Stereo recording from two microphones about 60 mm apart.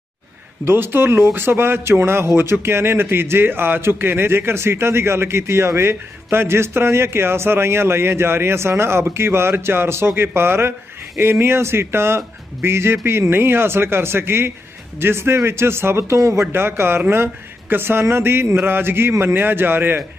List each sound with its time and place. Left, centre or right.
0.6 s speech: right